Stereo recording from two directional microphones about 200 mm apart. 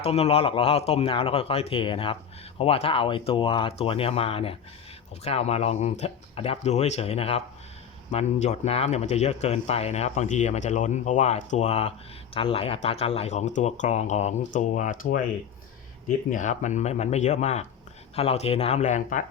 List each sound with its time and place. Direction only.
0.0 s speech: 30° left (ahead or behind)